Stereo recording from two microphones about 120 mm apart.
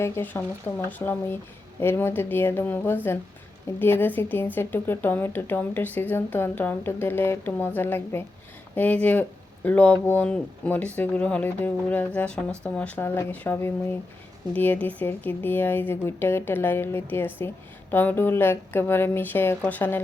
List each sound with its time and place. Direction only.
0.0 s a woman's voice: 20° left (ahead or behind)